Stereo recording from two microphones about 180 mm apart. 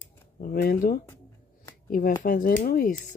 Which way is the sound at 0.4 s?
55° left (ahead or behind).